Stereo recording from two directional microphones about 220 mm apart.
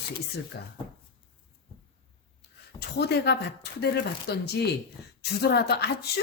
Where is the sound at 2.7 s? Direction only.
50° left (ahead or behind).